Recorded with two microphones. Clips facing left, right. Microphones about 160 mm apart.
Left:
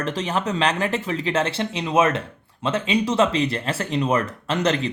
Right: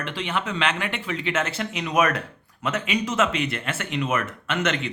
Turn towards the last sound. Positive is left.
turn(degrees=35)  # may be behind; listen again after turning